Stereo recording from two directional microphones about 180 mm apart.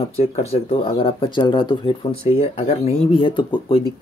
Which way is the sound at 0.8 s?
30° left (ahead or behind).